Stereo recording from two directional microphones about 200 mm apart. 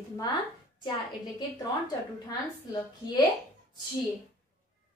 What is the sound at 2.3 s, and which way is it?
Speech, 20° left (ahead or behind).